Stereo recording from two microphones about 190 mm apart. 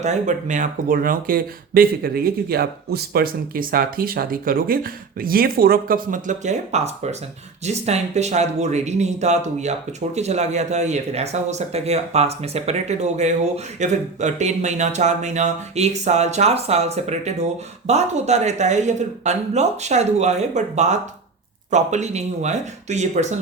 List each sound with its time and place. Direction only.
0.0 s speech: 40° right (ahead or behind)